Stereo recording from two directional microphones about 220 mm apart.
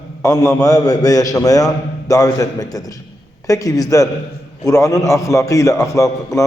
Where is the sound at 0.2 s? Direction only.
15° left (ahead or behind).